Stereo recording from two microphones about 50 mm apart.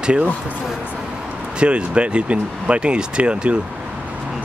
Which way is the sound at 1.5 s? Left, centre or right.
Right.